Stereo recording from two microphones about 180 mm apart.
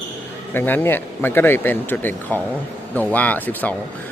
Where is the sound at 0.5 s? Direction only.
10° left (ahead or behind).